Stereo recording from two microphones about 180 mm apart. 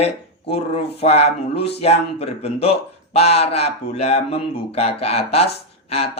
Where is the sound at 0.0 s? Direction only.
35° left (ahead or behind).